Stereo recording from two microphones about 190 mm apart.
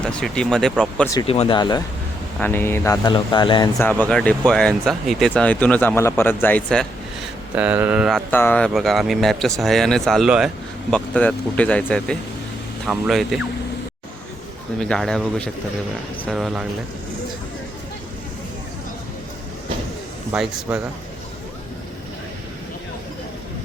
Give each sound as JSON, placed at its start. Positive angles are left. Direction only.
{"t": 0.0, "sound": "speech", "side_deg": 5}
{"t": 1.3, "sound": "speech", "side_deg": 30}
{"t": 2.4, "sound": "speech", "side_deg": 10}
{"t": 3.8, "sound": "speech", "side_deg": 10}
{"t": 7.5, "sound": "speech", "side_deg": -10}
{"t": 8.3, "sound": "speech", "side_deg": 10}
{"t": 14.8, "sound": "speech", "side_deg": 5}
{"t": 20.3, "sound": "speech", "side_deg": -5}